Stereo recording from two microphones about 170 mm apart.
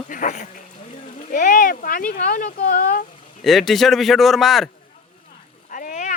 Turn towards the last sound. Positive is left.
turn(degrees=50)  # may be behind; listen again after turning